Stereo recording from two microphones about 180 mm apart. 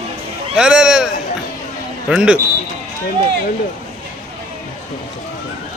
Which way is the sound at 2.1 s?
5° right (ahead or behind).